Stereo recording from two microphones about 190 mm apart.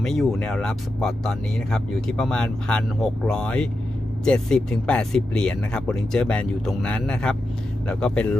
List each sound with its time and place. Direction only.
0.0 s speech: centre (ahead or behind)